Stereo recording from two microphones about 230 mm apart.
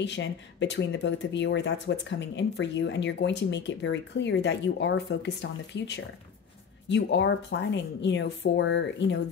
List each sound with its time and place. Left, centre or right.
0.0 s speech: left